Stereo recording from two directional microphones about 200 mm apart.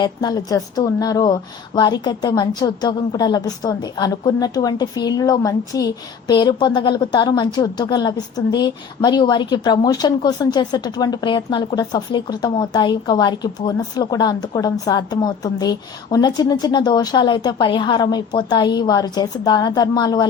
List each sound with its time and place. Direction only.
0.0 s a woman's voice: 20° left (ahead or behind)